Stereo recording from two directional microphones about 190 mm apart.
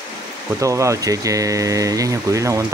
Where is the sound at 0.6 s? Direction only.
15° right (ahead or behind).